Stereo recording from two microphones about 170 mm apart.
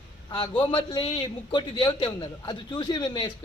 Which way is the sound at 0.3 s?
30° left (ahead or behind).